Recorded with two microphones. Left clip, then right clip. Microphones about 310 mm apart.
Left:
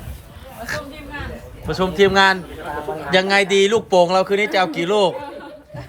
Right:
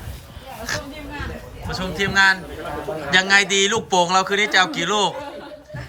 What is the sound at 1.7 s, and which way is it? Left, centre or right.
A man's voice, centre.